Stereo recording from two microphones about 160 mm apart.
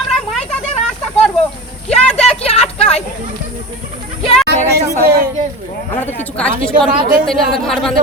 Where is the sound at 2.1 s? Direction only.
40° left (ahead or behind).